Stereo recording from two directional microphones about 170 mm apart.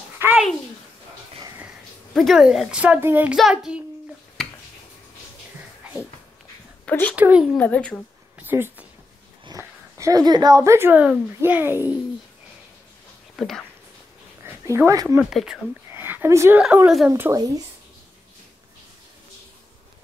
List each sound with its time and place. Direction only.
0.2 s babbling: 10° right (ahead or behind)
2.1 s a woman's voice: centre (ahead or behind)
6.9 s speech: 10° left (ahead or behind)
7.2 s a woman's voice: 10° right (ahead or behind)
7.5 s a woman's voice: 5° left (ahead or behind)
8.4 s speech: 10° right (ahead or behind)
13.4 s speech: centre (ahead or behind)
14.4 s speech: 15° right (ahead or behind)
15.2 s speech: 5° right (ahead or behind)
16.6 s speech: 5° right (ahead or behind)
17.1 s speech: 20° right (ahead or behind)